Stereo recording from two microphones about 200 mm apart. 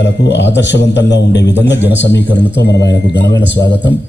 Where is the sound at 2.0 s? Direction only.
60° left (ahead or behind).